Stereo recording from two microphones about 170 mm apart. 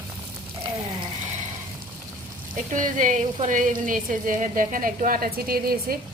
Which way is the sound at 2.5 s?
50° right (ahead or behind).